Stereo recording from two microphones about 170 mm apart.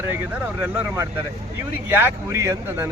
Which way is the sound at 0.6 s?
10° right (ahead or behind).